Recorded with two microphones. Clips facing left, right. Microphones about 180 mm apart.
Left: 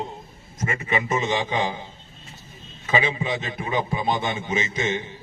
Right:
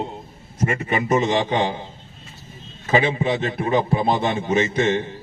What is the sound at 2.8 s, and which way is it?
A man's voice, 35° right (ahead or behind).